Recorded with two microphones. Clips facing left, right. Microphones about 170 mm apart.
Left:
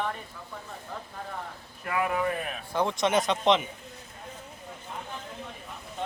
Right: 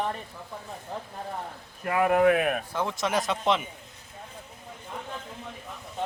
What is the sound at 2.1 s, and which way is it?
Speech, 70° right (ahead or behind).